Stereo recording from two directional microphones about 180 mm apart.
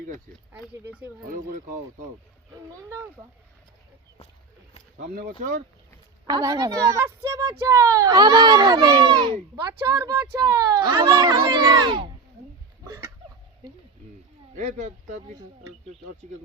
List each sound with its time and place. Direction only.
0.9 s a woman's voice: 10° right (ahead or behind)
1.3 s speech: 50° right (ahead or behind)
4.9 s speech: 55° right (ahead or behind)
6.2 s a woman's voice: 20° right (ahead or behind)
12.8 s a sound: 15° right (ahead or behind)
14.5 s speech: 40° right (ahead or behind)